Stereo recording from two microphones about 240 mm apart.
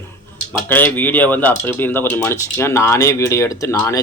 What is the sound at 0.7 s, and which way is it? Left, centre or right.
Speech, centre.